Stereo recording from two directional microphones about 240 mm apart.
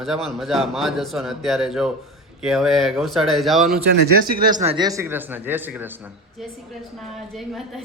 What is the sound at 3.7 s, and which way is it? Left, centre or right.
Speech, right.